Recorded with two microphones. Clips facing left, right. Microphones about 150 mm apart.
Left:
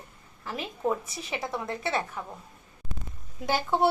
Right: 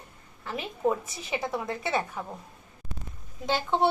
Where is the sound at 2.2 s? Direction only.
15° right (ahead or behind).